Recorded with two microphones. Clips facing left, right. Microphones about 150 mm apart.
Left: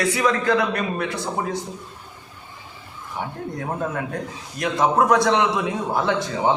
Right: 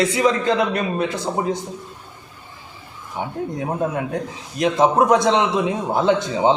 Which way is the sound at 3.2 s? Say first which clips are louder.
Right 4 dB; 20° right (ahead or behind).